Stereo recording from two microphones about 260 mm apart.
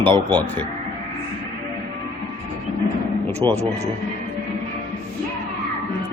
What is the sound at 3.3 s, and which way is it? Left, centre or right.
Speech, centre.